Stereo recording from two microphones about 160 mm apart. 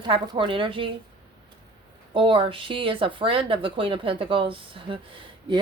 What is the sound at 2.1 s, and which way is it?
Speech, 30° right (ahead or behind).